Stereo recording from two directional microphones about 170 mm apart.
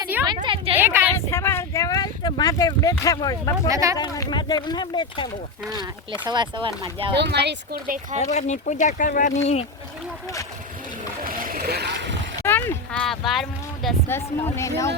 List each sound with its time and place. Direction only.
0.4 s a sound: 30° right (ahead or behind)
0.8 s a sound: 10° right (ahead or behind)
1.1 s a sound: 15° left (ahead or behind)
3.0 s speech: 20° left (ahead or behind)
3.7 s speech: 20° right (ahead or behind)
3.9 s speech: 20° left (ahead or behind)
5.8 s speech: 25° right (ahead or behind)
7.2 s speech: 80° right; by 8.0 s 60° right (ahead or behind)
8.2 s speech: 45° left (ahead or behind)
11.3 s vehicle: 55° right (ahead or behind); by 12.1 s 80° right
12.5 s a sound: 10° left (ahead or behind)
13.1 s speech: centre (ahead or behind)
14.1 s speech: 15° left (ahead or behind)